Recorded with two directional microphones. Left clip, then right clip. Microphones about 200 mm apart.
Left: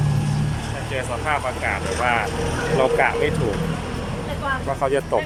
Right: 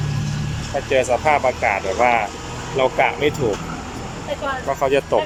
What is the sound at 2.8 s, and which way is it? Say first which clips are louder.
Speech: right 2 dB; 10° right (ahead or behind).